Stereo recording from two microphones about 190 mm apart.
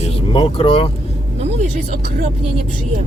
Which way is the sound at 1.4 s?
40° right (ahead or behind).